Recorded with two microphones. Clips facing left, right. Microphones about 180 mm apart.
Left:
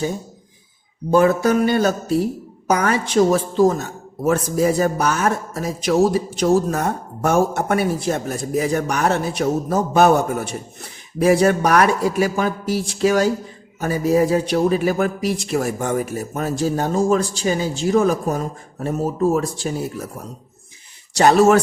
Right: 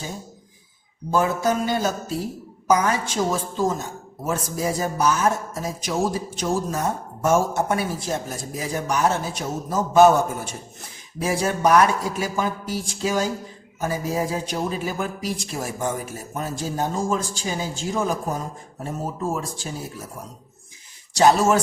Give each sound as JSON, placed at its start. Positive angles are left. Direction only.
{"t": 1.1, "sound": "speech", "side_deg": 65}
{"t": 21.1, "sound": "speech", "side_deg": 65}